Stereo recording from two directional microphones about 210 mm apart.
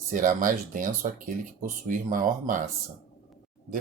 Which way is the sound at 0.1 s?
40° right (ahead or behind).